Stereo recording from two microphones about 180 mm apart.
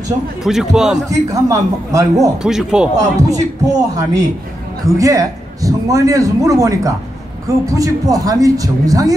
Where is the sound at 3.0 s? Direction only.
20° right (ahead or behind).